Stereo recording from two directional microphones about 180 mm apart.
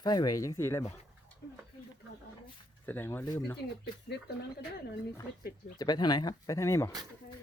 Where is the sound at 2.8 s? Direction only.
10° left (ahead or behind).